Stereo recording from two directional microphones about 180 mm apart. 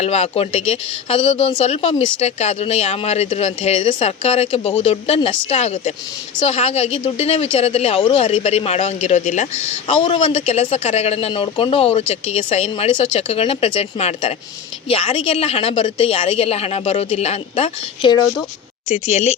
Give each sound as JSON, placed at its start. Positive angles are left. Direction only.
{"t": 0.0, "sound": "a woman's voice", "side_deg": 35}
{"t": 9.8, "sound": "a woman's voice", "side_deg": 30}
{"t": 18.9, "sound": "a woman's voice", "side_deg": 35}